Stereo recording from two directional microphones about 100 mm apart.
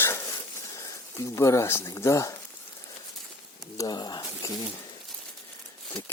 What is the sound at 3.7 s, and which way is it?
Speech, 40° left (ahead or behind).